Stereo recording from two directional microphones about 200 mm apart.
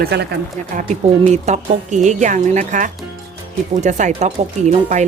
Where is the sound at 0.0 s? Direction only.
55° right (ahead or behind).